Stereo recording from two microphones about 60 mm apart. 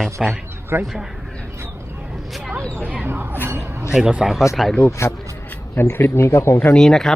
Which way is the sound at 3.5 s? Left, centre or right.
Right.